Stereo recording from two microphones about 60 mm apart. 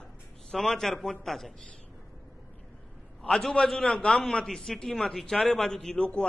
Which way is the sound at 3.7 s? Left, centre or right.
Centre.